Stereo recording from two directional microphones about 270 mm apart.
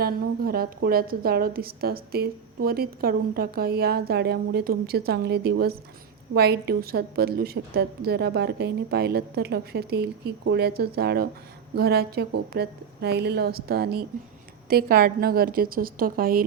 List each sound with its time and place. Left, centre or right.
0.0 s a woman's voice: right